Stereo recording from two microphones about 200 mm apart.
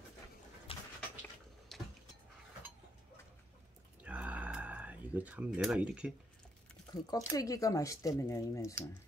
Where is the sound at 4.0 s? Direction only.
5° right (ahead or behind).